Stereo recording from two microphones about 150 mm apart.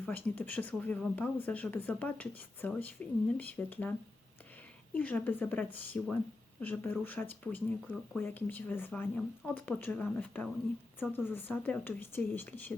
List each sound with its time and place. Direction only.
0.0 s speech: 10° left (ahead or behind)
4.9 s speech: 10° left (ahead or behind)